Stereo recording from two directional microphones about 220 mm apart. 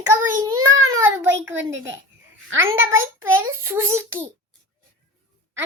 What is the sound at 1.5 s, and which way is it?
Speech, 55° right (ahead or behind).